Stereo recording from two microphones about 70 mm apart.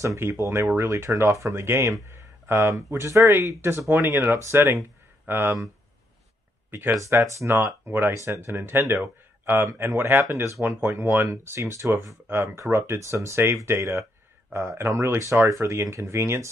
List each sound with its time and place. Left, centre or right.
0.0 s speech: right
6.7 s speech: right
7.0 s speech: right
10.6 s speech: centre
11.1 s speech: right